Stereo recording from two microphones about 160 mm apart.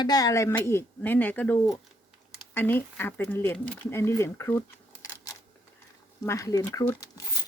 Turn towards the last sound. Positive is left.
turn(degrees=20)  # may be behind; listen again after turning